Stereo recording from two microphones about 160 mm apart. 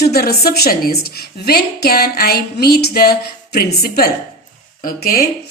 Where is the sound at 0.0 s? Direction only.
75° left (ahead or behind).